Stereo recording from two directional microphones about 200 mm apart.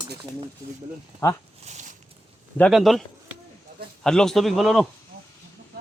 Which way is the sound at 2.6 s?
Centre (ahead or behind).